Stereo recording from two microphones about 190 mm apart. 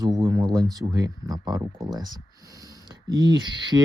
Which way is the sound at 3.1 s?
20° right (ahead or behind).